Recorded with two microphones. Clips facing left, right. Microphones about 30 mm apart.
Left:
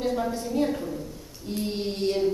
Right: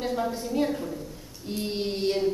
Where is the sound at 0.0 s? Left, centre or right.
Centre.